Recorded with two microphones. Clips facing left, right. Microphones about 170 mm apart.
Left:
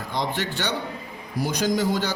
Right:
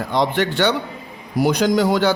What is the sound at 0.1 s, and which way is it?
A man's voice, 65° right (ahead or behind).